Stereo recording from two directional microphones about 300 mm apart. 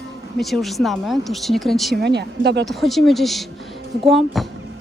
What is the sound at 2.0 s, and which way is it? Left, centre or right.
Speech, right.